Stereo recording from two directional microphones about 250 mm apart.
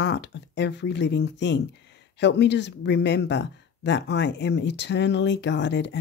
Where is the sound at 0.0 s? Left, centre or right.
Left.